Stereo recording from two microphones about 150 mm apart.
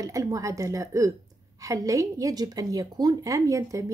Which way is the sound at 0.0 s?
20° right (ahead or behind).